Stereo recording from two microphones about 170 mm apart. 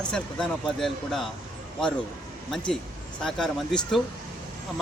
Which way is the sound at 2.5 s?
5° left (ahead or behind).